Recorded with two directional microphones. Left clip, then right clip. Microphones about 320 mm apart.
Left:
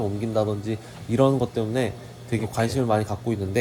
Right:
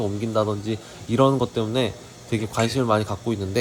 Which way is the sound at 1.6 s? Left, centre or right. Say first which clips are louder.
Right 2 dB; centre.